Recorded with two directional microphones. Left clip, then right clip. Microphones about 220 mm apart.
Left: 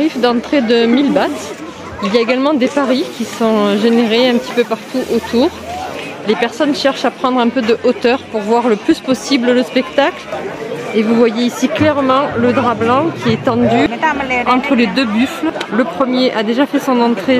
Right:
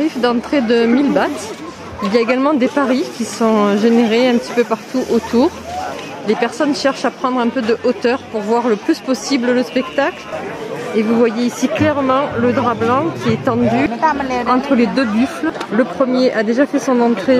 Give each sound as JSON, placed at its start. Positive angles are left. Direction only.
{"t": 0.0, "sound": "speech", "side_deg": 0}
{"t": 2.3, "sound": "speech", "side_deg": -5}
{"t": 6.2, "sound": "speech", "side_deg": -5}